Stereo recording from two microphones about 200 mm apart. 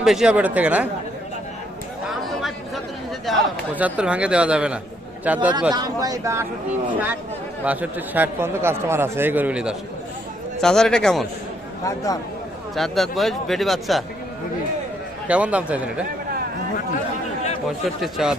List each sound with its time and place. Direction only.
0.0 s a man's voice: centre (ahead or behind)
2.0 s chatter: centre (ahead or behind)
3.8 s a man's voice: 5° right (ahead or behind)
5.7 s a man's voice: 20° right (ahead or behind)
7.6 s a man's voice: 5° right (ahead or behind)
11.9 s speech: 15° left (ahead or behind)
12.7 s speech: centre (ahead or behind)
15.3 s a man's voice: 5° right (ahead or behind)
17.7 s speech: centre (ahead or behind)